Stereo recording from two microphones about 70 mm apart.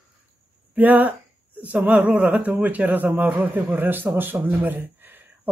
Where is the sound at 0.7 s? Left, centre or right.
Right.